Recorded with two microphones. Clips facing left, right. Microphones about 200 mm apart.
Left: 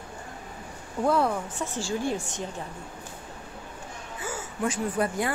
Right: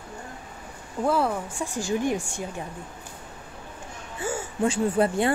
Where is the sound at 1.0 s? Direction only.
5° right (ahead or behind).